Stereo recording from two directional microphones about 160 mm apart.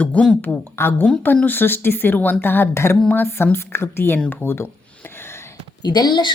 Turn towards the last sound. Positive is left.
turn(degrees=30)  # may be behind; listen again after turning